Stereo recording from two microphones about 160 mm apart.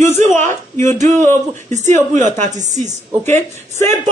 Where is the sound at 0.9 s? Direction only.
50° right (ahead or behind).